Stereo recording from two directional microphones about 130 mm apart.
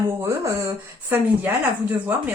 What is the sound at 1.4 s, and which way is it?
Speech, 15° right (ahead or behind).